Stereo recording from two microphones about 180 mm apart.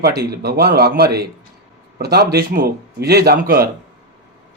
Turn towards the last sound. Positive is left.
turn(degrees=-60)  # may be behind; listen again after turning